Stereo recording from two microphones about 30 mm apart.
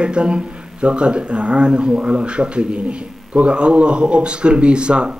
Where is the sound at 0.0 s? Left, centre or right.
Right.